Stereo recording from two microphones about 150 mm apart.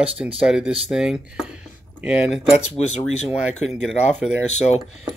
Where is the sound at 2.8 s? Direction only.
45° left (ahead or behind).